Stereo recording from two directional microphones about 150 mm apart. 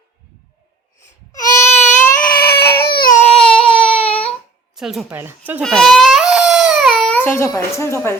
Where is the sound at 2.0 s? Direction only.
15° left (ahead or behind).